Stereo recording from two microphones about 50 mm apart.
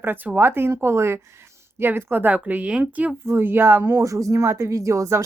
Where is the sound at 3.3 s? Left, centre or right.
Right.